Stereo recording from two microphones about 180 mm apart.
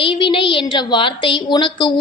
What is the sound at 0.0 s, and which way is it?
A woman's voice, 30° left (ahead or behind).